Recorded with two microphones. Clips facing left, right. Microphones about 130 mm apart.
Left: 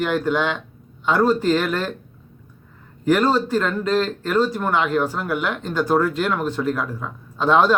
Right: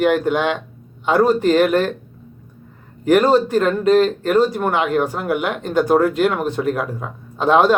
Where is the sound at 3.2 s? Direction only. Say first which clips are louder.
Right 5 dB; 50° right (ahead or behind).